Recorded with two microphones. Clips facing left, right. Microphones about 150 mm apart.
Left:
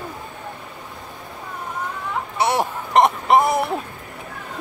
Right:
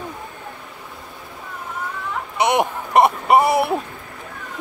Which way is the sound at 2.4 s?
20° right (ahead or behind).